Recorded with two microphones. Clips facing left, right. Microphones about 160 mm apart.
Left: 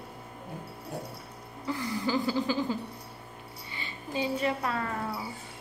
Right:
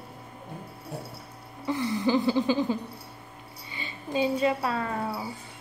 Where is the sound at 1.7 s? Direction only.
20° right (ahead or behind).